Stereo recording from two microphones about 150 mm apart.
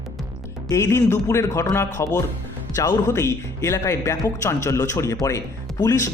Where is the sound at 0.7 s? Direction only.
20° left (ahead or behind).